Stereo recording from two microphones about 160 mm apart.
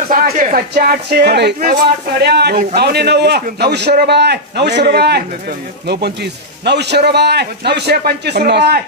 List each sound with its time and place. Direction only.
0.1 s a man's voice: 60° right (ahead or behind); by 8.8 s 90° right